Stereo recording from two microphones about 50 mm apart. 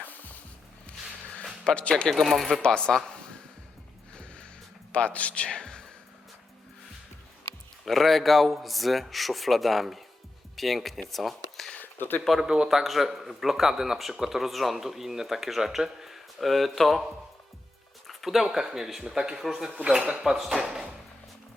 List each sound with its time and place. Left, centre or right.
0.1 s music: left
1.6 s speech: left
2.0 s speech: centre
2.6 s speech: centre
4.9 s speech: left
7.9 s speech: centre
11.1 s a sound: centre
11.8 s a sound: left
12.4 s speech: centre
12.6 s speech: centre
18.1 s a sound: centre
18.4 s speech: centre